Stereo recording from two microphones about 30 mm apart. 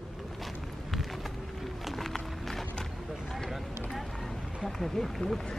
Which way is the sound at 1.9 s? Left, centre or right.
Centre.